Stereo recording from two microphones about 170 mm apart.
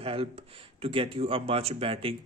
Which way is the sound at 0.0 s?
35° right (ahead or behind).